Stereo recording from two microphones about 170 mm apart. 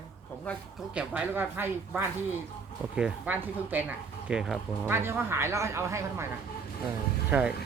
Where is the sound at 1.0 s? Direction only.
10° right (ahead or behind).